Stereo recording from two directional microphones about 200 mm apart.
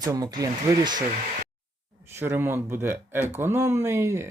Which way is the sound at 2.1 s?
10° right (ahead or behind).